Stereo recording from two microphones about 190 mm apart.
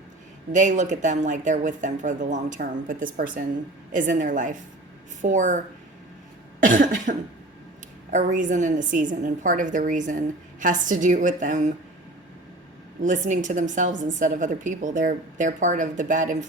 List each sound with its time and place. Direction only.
0.5 s a woman's voice: 40° right (ahead or behind)
6.6 s a woman's voice: 45° right (ahead or behind)
13.0 s a woman's voice: 40° right (ahead or behind)